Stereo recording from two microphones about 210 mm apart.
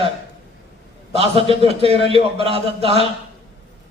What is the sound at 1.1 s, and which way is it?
A man's voice, 30° right (ahead or behind).